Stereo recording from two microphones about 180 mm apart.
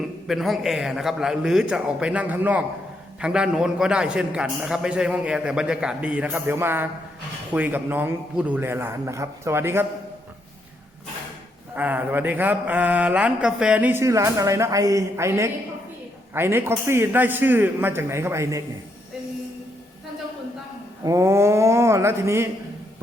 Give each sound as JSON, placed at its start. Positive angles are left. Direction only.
{"t": 0.3, "sound": "a man's voice", "side_deg": 0}
{"t": 7.5, "sound": "mantra", "side_deg": -10}
{"t": 11.7, "sound": "mantra", "side_deg": -10}
{"t": 21.0, "sound": "mantra", "side_deg": -15}